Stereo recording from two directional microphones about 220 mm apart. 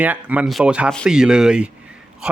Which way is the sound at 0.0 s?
5° right (ahead or behind).